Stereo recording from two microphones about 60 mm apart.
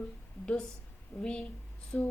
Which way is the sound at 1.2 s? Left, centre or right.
Centre.